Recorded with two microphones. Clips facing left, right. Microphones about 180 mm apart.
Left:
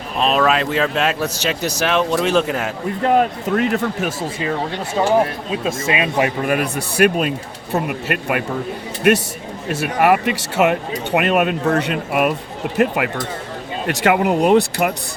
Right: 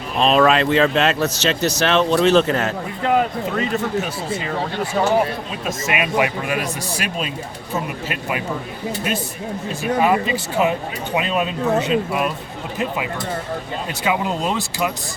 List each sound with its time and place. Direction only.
0.2 s speech: 5° left (ahead or behind)
3.5 s speech: 60° left (ahead or behind)
5.6 s speech: 30° left (ahead or behind)
6.5 s speech: 60° left (ahead or behind)
9.1 s speech: 70° left (ahead or behind)